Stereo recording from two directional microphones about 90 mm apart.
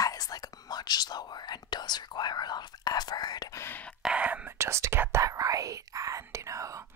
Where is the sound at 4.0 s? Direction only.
10° right (ahead or behind).